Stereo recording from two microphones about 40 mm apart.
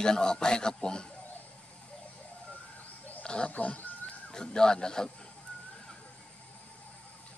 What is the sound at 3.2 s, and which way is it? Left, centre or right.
Speech, left.